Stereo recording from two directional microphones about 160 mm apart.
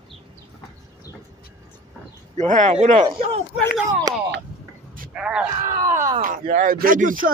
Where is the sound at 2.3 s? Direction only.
50° right (ahead or behind).